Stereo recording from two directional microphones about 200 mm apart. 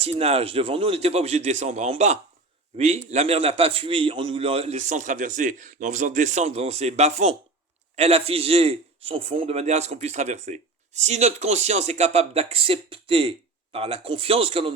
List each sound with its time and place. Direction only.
0.0 s a man's voice: 30° right (ahead or behind)